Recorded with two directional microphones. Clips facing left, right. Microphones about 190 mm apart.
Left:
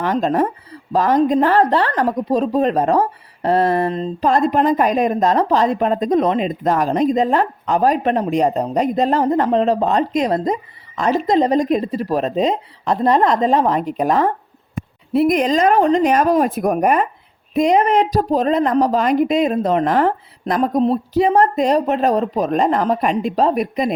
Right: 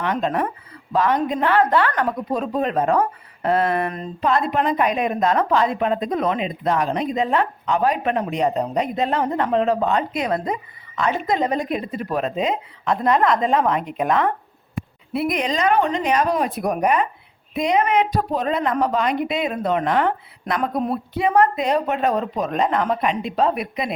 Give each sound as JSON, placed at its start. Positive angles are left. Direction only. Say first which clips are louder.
{"t": 0.0, "sound": "a woman's voice", "louder": "left 5 dB", "side_deg": 40}